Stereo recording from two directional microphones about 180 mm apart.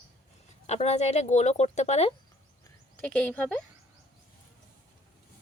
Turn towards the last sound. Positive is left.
turn(degrees=5)  # may be behind; listen again after turning